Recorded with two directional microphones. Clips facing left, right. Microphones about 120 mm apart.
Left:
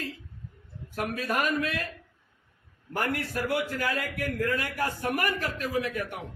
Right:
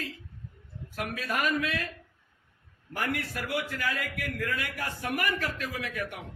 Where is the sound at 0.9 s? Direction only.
45° left (ahead or behind).